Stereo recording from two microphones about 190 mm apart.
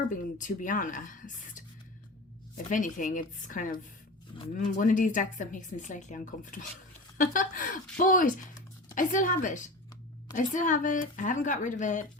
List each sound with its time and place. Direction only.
0.1 s speech: 40° left (ahead or behind)
2.6 s speech: 45° left (ahead or behind)
4.8 s speech: 45° left (ahead or behind)